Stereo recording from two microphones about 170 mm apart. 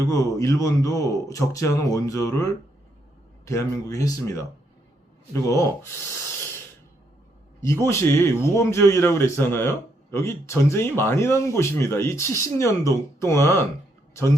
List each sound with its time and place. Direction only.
0.1 s a man's voice: 20° left (ahead or behind)
7.6 s speech: 15° left (ahead or behind)